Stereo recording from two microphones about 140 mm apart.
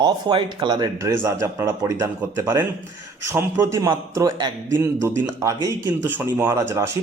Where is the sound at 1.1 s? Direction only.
20° right (ahead or behind).